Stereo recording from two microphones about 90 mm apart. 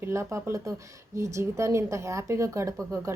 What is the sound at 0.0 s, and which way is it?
A woman's voice, 30° right (ahead or behind).